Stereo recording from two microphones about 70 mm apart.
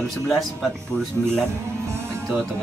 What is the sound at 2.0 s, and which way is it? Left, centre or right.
Music, right.